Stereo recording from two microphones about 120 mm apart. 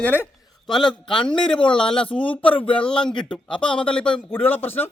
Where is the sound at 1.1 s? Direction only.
40° left (ahead or behind).